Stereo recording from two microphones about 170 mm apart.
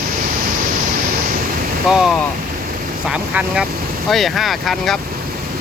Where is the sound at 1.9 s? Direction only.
5° right (ahead or behind).